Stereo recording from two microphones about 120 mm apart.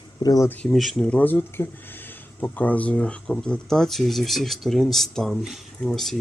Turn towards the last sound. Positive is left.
turn(degrees=0)  # may be behind; listen again after turning